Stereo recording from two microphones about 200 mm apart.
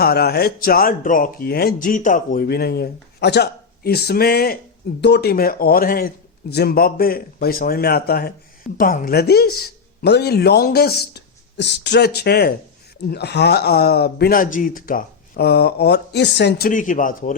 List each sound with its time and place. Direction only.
0.0 s speech: 50° left (ahead or behind)